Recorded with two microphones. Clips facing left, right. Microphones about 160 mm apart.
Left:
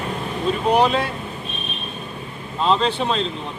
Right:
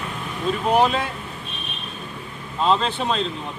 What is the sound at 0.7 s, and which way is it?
Speech, 5° right (ahead or behind).